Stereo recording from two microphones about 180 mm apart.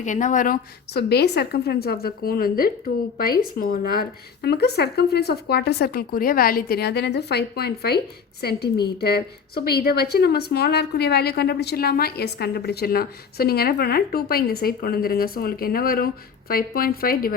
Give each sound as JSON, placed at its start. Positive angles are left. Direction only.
{"t": 0.0, "sound": "a woman's voice", "side_deg": 45}
{"t": 4.4, "sound": "a woman's voice", "side_deg": 65}